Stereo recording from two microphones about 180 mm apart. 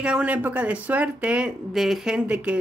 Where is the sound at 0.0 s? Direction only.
5° right (ahead or behind).